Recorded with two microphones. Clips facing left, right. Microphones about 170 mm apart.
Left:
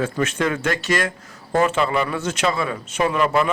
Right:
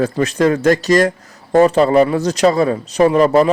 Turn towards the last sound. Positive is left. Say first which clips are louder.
# right 8 dB
turn(degrees=-40)  # may be behind; listen again after turning